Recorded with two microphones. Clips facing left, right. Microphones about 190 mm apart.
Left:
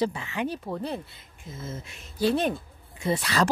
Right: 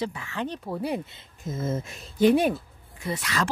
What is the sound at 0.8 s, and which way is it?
Speech, 15° right (ahead or behind).